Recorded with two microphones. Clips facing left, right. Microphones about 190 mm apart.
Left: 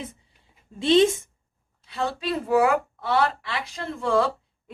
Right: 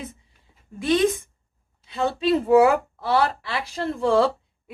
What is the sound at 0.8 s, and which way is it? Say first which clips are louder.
Speech: left 2 dB; 25° left (ahead or behind).